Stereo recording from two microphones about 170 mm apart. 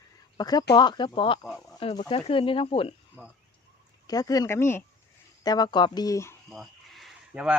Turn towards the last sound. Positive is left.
turn(degrees=-5)  # may be behind; listen again after turning